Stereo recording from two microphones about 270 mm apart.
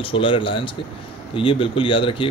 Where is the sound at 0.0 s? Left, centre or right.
Centre.